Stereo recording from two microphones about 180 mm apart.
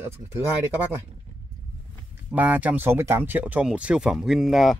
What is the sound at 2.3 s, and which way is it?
Speech, 10° right (ahead or behind).